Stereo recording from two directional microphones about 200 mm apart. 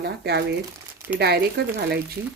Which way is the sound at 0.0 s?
55° right (ahead or behind).